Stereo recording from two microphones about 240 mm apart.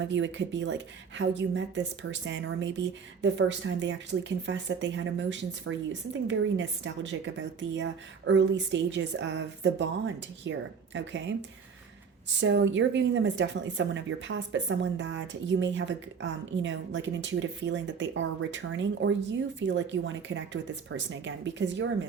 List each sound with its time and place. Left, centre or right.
0.1 s a woman's voice: right
12.4 s a woman's voice: right